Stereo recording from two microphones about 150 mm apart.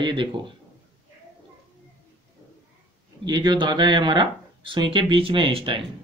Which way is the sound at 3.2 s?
30° right (ahead or behind).